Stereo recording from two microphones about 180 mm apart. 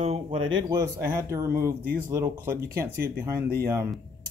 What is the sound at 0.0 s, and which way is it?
Speech, 35° right (ahead or behind).